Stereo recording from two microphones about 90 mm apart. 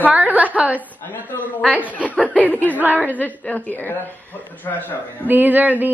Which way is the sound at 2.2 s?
15° left (ahead or behind).